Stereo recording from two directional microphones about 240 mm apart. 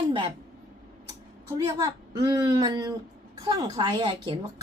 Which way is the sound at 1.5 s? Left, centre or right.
Centre.